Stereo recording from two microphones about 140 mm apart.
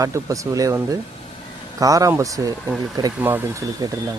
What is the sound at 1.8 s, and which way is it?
Speech, 25° right (ahead or behind).